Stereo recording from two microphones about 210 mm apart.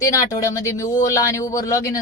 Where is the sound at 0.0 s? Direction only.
15° left (ahead or behind).